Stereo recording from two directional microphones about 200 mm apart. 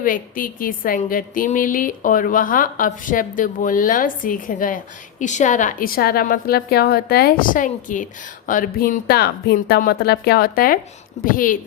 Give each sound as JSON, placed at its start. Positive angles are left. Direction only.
{"t": 0.0, "sound": "a woman's voice", "side_deg": 45}